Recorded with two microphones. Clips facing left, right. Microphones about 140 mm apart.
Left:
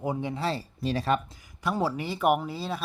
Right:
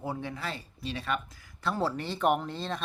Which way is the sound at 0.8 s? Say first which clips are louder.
Left 7 dB; 40° left (ahead or behind).